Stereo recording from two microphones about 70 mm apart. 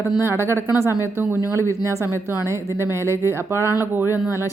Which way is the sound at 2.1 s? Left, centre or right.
Left.